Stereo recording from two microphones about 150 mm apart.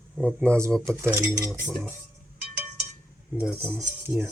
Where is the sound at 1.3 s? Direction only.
20° right (ahead or behind).